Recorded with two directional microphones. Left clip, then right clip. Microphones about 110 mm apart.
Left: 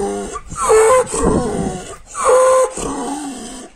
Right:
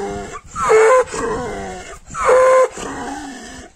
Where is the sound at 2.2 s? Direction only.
20° right (ahead or behind).